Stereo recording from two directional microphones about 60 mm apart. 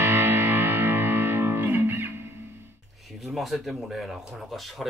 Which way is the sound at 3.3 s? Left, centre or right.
Centre.